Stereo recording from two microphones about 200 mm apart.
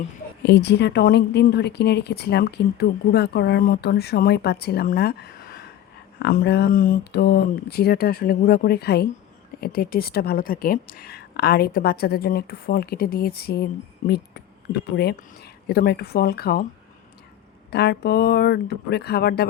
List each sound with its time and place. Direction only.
0.4 s a woman's voice: 55° left (ahead or behind)
14.9 s a woman's voice: 55° left (ahead or behind)
17.7 s a woman's voice: 55° left (ahead or behind)